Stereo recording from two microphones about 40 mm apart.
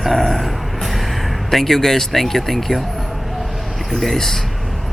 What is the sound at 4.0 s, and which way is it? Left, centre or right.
Speech, centre.